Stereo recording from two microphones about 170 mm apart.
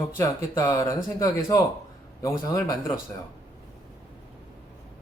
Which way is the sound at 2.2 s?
20° left (ahead or behind).